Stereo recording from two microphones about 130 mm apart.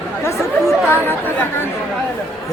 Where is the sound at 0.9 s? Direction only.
15° left (ahead or behind).